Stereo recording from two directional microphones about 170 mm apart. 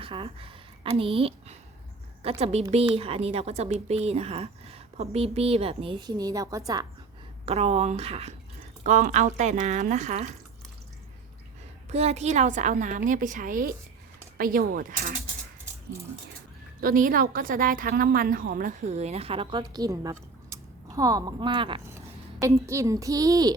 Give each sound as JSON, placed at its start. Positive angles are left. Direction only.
{"t": 0.0, "sound": "a woman's voice", "side_deg": -35}
{"t": 7.4, "sound": "a woman's voice", "side_deg": -40}
{"t": 11.9, "sound": "a woman's voice", "side_deg": -40}
{"t": 16.8, "sound": "a woman's voice", "side_deg": -55}
{"t": 21.8, "sound": "a child's voice", "side_deg": -15}